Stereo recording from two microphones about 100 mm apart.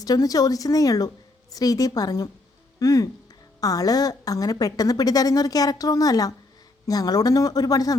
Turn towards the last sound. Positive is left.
turn(degrees=40)  # may be behind; listen again after turning